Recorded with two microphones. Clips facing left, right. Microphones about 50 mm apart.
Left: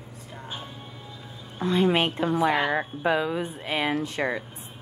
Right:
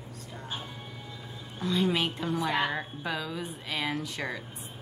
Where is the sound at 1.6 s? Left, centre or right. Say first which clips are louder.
Left 5 dB; left.